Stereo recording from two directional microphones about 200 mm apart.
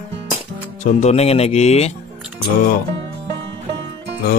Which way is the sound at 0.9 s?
30° left (ahead or behind).